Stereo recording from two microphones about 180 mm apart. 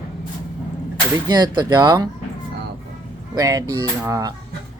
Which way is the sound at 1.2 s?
25° right (ahead or behind).